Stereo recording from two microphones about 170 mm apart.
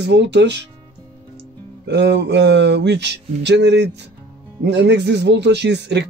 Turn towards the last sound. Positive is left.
turn(degrees=-85)